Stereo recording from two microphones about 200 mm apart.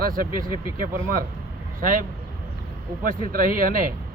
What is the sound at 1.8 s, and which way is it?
Speech, 45° right (ahead or behind).